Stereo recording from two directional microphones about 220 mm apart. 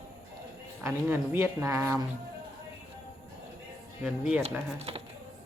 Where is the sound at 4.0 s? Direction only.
5° right (ahead or behind).